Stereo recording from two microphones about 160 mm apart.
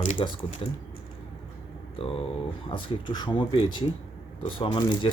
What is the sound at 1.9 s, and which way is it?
Speech, 35° left (ahead or behind).